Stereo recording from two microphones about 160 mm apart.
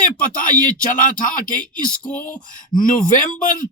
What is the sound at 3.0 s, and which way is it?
Speech, 55° left (ahead or behind).